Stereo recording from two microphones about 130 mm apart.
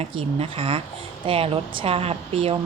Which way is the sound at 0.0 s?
45° right (ahead or behind).